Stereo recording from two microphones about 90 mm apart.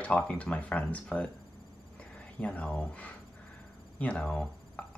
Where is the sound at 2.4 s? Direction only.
15° left (ahead or behind).